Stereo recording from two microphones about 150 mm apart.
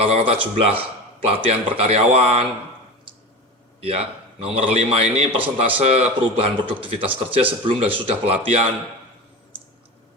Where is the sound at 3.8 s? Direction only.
40° right (ahead or behind).